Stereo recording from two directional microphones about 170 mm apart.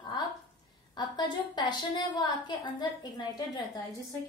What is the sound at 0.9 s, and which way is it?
A woman's voice, 25° left (ahead or behind).